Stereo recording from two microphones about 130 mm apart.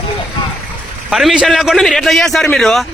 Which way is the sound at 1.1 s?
Centre (ahead or behind).